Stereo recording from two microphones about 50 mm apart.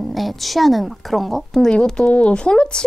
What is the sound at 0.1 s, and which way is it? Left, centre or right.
A woman's voice, centre.